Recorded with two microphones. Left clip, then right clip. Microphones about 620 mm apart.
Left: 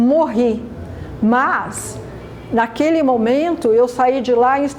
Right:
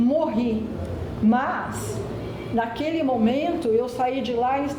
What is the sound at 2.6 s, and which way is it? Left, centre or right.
A woman's voice, left.